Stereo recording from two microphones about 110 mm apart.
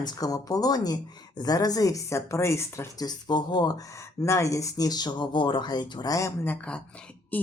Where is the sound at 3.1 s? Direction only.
40° left (ahead or behind).